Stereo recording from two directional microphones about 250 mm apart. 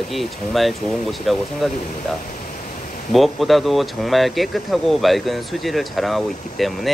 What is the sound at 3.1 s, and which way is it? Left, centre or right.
Speech, centre.